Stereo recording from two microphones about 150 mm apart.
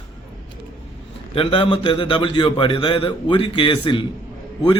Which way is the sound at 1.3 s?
35° left (ahead or behind).